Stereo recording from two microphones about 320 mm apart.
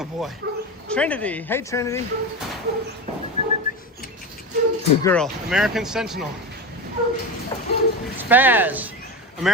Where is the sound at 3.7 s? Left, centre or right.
Left.